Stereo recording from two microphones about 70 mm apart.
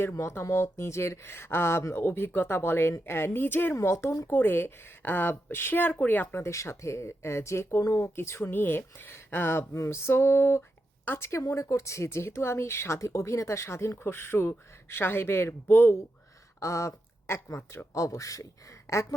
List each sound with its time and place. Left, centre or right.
0.1 s speech: left
3.8 s speech: left
4.3 s speech: left
6.4 s speech: left
11.3 s speech: left
16.6 s speech: left